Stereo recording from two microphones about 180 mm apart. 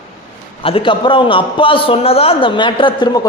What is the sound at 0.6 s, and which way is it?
A man's voice, 30° left (ahead or behind).